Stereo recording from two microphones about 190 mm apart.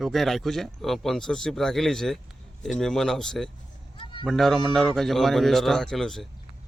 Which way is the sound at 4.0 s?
25° left (ahead or behind).